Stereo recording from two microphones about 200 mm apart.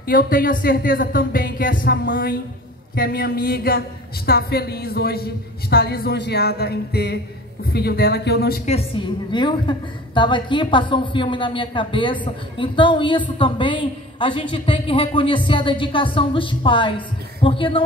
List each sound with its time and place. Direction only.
0.0 s speech: 45° left (ahead or behind)
8.6 s a woman's voice: 30° left (ahead or behind)